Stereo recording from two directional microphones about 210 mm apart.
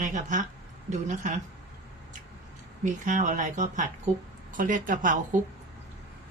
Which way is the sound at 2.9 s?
35° right (ahead or behind).